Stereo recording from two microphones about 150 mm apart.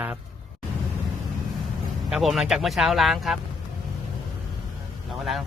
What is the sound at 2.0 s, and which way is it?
Speech, centre (ahead or behind).